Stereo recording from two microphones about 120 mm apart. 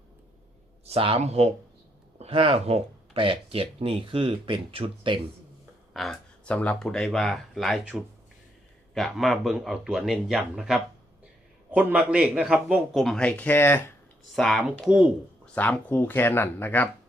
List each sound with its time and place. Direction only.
0.9 s speech: 50° right (ahead or behind)
1.2 s speech: 65° right (ahead or behind)
2.1 s speech: 55° right (ahead or behind)
5.9 s a man's voice: centre (ahead or behind); by 13.9 s 20° left (ahead or behind)
14.3 s a man's voice: 5° left (ahead or behind)
14.6 s speech: 10° right (ahead or behind)
15.5 s speech: 15° left (ahead or behind)